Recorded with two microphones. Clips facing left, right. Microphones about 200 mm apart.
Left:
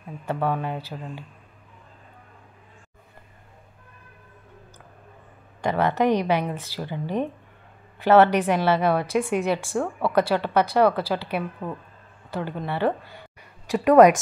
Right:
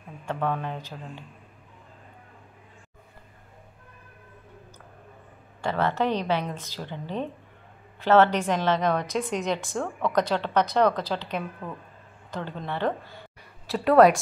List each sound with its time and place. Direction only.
0.2 s speech: 10° left (ahead or behind)
5.6 s speech: 15° left (ahead or behind)